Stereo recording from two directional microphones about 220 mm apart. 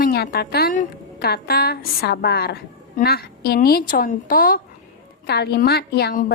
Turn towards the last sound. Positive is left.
turn(degrees=45)  # may be behind; listen again after turning